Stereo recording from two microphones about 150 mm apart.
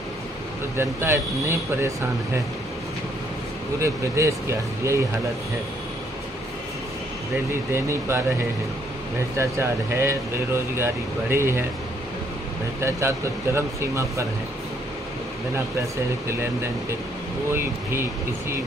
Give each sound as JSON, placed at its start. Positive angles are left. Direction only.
{"t": 0.7, "sound": "speech", "side_deg": -15}
{"t": 3.8, "sound": "speech", "side_deg": -20}
{"t": 7.7, "sound": "speech", "side_deg": -15}
{"t": 9.4, "sound": "speech", "side_deg": -15}
{"t": 12.8, "sound": "speech", "side_deg": -20}
{"t": 17.5, "sound": "speech", "side_deg": -15}